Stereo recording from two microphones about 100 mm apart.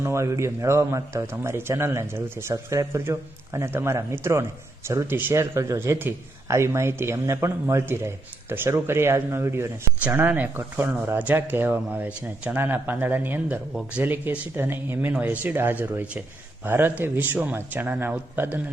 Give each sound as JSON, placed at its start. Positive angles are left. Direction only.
{"t": 0.0, "sound": "speech", "side_deg": -30}